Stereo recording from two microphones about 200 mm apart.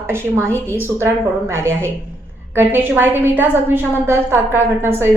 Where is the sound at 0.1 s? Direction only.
15° right (ahead or behind).